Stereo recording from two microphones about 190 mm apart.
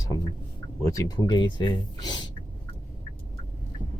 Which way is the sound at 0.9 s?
20° left (ahead or behind).